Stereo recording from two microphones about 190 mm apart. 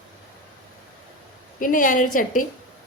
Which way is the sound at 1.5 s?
45° left (ahead or behind).